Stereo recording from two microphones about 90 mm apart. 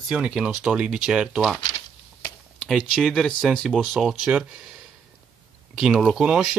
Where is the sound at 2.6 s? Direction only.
Centre (ahead or behind).